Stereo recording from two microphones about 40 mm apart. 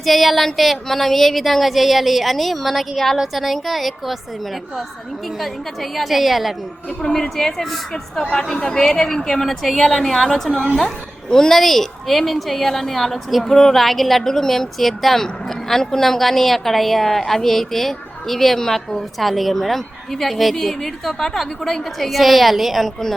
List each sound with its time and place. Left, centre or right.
0.0 s a woman's voice: centre
5.4 s a woman's voice: centre
7.0 s a woman's voice: centre
8.3 s a woman's voice: centre
19.2 s a woman's voice: centre